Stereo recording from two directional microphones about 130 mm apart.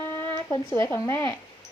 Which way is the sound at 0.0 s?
15° left (ahead or behind).